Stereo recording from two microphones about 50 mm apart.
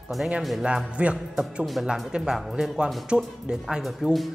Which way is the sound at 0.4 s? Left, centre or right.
Centre.